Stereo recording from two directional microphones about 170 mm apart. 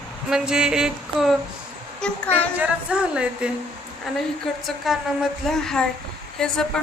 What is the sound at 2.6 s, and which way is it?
Speech, 5° right (ahead or behind).